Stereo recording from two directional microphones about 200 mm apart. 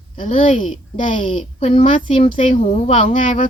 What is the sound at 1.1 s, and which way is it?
A woman's voice, 25° left (ahead or behind).